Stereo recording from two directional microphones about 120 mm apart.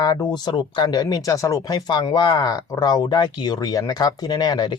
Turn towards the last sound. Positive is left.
turn(degrees=35)  # may be behind; listen again after turning